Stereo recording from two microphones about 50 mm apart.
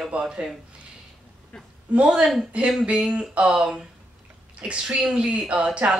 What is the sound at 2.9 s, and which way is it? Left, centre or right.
Speech, right.